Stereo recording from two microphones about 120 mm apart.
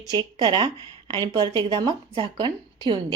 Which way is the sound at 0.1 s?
40° right (ahead or behind).